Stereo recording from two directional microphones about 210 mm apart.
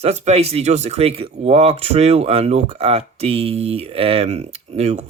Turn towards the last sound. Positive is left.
turn(degrees=-30)  # may be behind; listen again after turning